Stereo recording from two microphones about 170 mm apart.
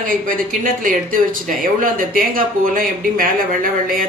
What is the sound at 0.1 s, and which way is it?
Speech, 55° right (ahead or behind).